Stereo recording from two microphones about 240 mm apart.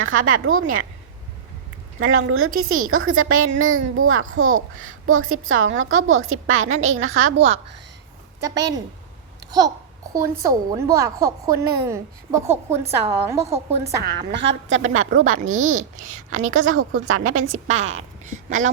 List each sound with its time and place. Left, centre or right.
0.0 s a child's voice: right
2.0 s a child's voice: right
2.5 s a woman's voice: right
2.7 s a child's voice: right
8.4 s a woman's voice: centre
14.3 s a woman's voice: right
15.5 s a woman's voice: right
16.5 s a child's voice: right
18.3 s a sound: right